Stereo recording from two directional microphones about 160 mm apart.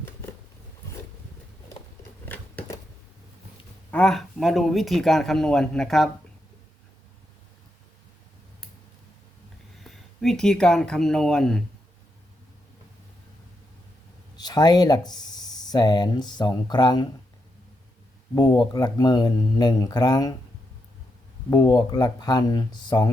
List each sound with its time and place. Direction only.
2.2 s scissors: 10° left (ahead or behind)
3.9 s speech: 5° left (ahead or behind)
9.8 s speech: centre (ahead or behind)
14.3 s speech: 25° left (ahead or behind)
18.3 s speech: 25° left (ahead or behind)
21.5 s speech: 25° left (ahead or behind)